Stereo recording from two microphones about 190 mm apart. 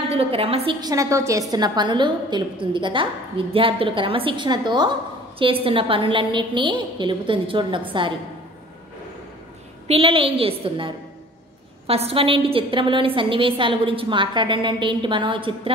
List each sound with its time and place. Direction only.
0.1 s a woman's voice: 30° right (ahead or behind)
9.8 s a woman's voice: 30° right (ahead or behind)